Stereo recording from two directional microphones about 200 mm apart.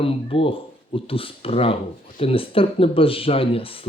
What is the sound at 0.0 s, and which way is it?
Speech, 30° left (ahead or behind).